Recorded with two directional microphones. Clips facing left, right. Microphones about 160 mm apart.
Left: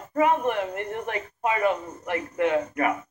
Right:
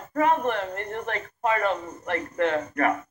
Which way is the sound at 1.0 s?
10° left (ahead or behind).